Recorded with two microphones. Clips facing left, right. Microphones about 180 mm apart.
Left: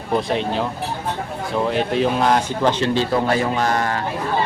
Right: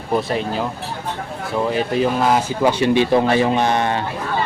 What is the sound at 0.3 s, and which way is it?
Speech, centre (ahead or behind).